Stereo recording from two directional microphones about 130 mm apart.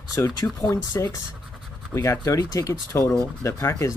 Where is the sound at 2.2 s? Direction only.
25° left (ahead or behind).